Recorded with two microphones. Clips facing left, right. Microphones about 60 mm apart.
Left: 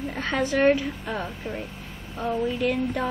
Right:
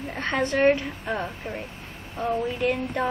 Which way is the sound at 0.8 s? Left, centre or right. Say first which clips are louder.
Right 1 dB; centre.